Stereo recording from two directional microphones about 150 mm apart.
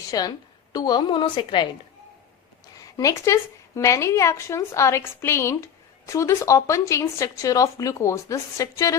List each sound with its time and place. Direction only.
0.1 s a woman's voice: 25° left (ahead or behind)
2.7 s a woman's voice: 20° left (ahead or behind)